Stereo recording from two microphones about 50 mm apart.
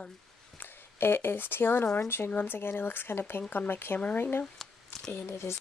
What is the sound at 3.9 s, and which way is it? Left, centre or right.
Speech, left.